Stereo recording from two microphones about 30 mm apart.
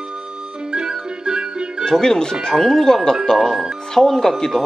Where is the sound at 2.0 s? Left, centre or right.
Centre.